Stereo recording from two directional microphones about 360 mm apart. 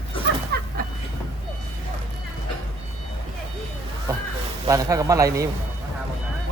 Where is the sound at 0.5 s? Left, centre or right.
Right.